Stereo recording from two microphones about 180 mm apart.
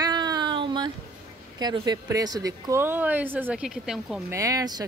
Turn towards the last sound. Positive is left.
turn(degrees=-20)  # may be behind; listen again after turning